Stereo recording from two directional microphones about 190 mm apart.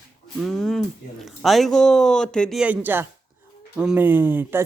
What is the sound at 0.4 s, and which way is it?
Speech, 5° left (ahead or behind).